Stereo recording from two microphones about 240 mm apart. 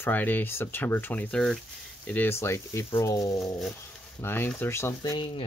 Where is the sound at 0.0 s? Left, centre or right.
Centre.